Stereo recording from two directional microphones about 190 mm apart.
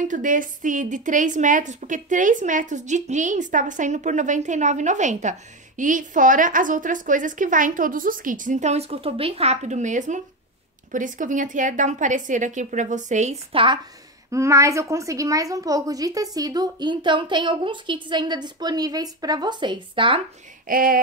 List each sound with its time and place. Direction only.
0.0 s a woman's voice: 45° right (ahead or behind)
14.3 s a woman's voice: 15° right (ahead or behind)
20.6 s a woman's voice: 50° right (ahead or behind)